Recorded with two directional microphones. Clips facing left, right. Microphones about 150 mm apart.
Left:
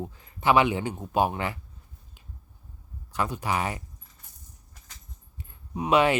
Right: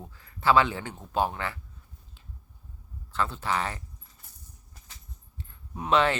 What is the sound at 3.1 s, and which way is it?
Speech, 15° left (ahead or behind).